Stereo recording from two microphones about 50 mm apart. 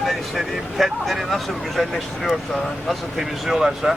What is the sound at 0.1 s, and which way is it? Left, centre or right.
Speech, centre.